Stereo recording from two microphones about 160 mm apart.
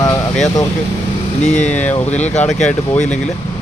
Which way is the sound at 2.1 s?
45° left (ahead or behind).